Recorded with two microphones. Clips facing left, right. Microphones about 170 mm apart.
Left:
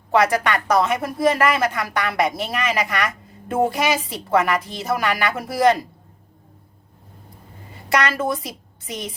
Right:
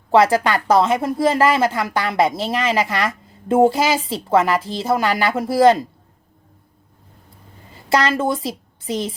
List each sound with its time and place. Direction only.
0.1 s a woman's voice: 30° right (ahead or behind)
7.9 s a woman's voice: 30° right (ahead or behind)